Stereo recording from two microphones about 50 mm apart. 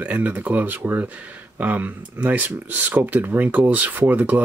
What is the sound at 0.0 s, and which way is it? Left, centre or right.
Speech, right.